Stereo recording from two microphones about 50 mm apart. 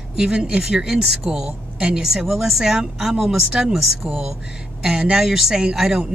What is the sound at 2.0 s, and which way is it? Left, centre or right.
Speech, centre.